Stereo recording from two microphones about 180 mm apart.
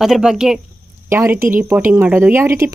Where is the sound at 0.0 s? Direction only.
Centre (ahead or behind).